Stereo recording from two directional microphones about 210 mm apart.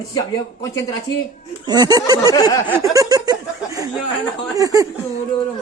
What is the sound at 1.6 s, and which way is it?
Speech, 20° right (ahead or behind).